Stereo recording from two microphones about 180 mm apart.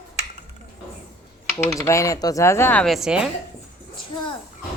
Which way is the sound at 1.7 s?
15° left (ahead or behind).